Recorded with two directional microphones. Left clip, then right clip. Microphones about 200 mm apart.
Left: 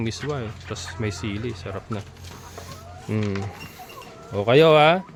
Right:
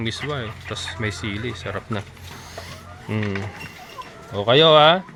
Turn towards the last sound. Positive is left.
turn(degrees=20)  # may be behind; listen again after turning